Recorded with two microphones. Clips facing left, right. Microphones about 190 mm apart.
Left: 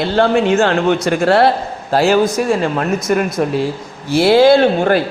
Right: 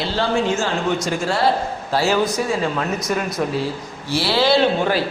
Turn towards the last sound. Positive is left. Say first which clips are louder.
# left 5 dB
turn(degrees=55)  # may be behind; listen again after turning